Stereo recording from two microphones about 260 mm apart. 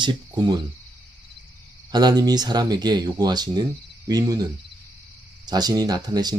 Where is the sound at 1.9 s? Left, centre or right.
Centre.